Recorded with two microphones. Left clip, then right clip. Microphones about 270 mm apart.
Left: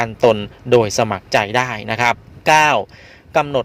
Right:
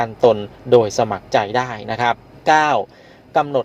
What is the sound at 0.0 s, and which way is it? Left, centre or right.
Speech, left.